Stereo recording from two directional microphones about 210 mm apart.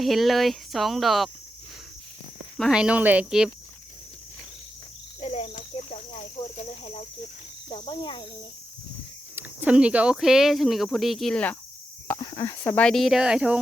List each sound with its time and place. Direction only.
0.0 s speech: centre (ahead or behind)
2.6 s speech: centre (ahead or behind)
5.2 s cricket: 30° left (ahead or behind)
7.8 s speech: 20° left (ahead or behind)
9.3 s speech: 5° right (ahead or behind)
12.0 s speech: 15° left (ahead or behind); by 13.6 s 5° right (ahead or behind)